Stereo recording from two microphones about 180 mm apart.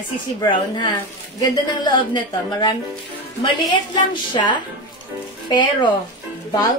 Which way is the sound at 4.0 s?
25° left (ahead or behind).